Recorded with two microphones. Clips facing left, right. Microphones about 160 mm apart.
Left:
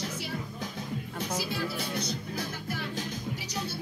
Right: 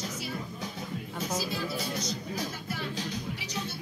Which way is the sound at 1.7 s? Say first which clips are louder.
Even; 55° left (ahead or behind).